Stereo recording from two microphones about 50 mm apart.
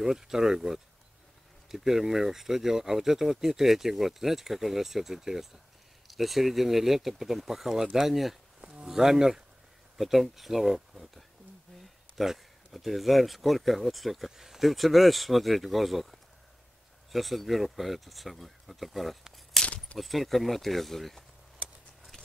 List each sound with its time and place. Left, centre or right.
0.0 s speech: centre
19.6 s keys jangling: left
20.0 s speech: centre